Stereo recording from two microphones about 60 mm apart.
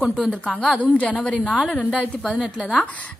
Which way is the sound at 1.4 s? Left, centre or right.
Centre.